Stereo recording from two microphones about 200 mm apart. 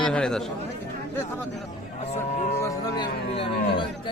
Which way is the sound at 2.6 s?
15° left (ahead or behind).